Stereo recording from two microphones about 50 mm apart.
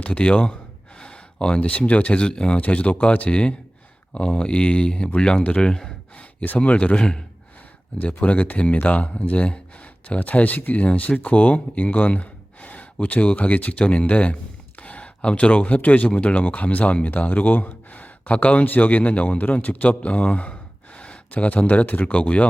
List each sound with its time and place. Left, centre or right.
0.0 s speech: left
0.9 s a sound: centre
1.9 s speech: left
5.4 s speech: left
5.6 s speech: centre
6.6 s speech: left
18.6 s speech: left